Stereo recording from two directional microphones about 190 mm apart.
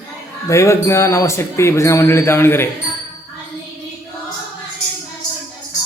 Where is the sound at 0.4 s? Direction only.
15° left (ahead or behind).